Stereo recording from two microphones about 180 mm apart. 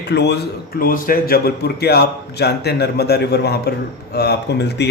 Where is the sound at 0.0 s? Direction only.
70° left (ahead or behind).